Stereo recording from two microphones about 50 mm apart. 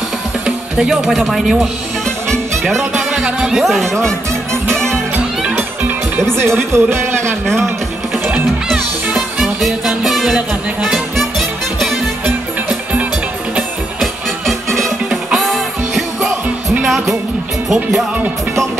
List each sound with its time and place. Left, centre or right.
0.7 s speech: centre
2.9 s music: centre
6.1 s speech: right
8.6 s music: centre
14.4 s music: centre
17.6 s speech: centre